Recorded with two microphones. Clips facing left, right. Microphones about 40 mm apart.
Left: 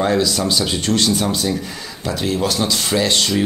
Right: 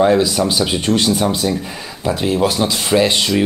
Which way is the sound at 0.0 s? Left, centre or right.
Centre.